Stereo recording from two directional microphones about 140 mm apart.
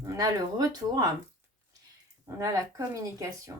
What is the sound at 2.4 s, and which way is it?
Speech, 25° right (ahead or behind).